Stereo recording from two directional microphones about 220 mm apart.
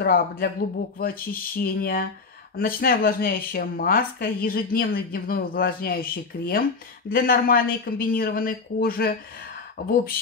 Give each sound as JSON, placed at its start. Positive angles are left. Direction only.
{"t": 0.0, "sound": "speech", "side_deg": 45}